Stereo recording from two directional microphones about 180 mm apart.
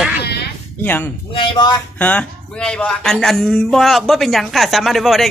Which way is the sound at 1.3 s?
25° left (ahead or behind).